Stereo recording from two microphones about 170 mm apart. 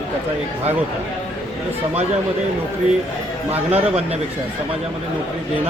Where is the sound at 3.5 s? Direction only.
35° right (ahead or behind).